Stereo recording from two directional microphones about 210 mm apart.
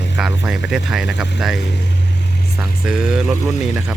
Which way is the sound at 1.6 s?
55° left (ahead or behind).